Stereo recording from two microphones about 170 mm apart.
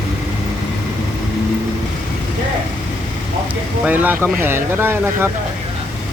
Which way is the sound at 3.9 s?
10° right (ahead or behind).